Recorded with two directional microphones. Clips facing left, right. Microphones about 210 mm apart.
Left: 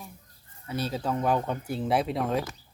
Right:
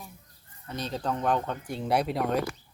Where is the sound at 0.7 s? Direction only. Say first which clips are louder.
Left 2 dB; 5° left (ahead or behind).